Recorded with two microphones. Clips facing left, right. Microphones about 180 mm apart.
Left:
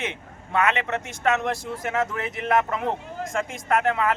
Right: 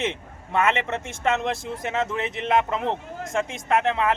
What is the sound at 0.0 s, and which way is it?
A man's voice, 25° right (ahead or behind).